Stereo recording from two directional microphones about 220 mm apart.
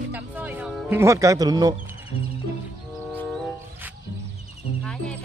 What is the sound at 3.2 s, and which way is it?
Music, 5° left (ahead or behind).